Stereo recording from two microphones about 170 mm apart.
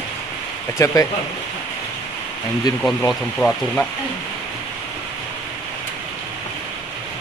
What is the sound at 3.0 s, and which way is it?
Speech, 10° left (ahead or behind).